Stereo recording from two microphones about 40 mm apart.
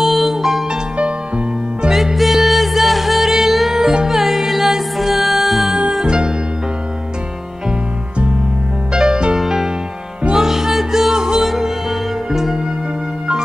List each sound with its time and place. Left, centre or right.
0.0 s music: centre
0.9 s music: right
1.9 s music: centre
6.0 s music: centre
8.9 s music: centre
9.4 s music: centre